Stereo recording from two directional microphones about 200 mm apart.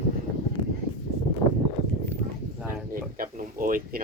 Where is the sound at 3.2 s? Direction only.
45° right (ahead or behind).